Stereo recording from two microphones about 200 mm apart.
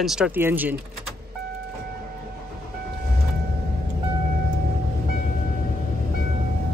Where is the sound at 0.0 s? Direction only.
5° right (ahead or behind).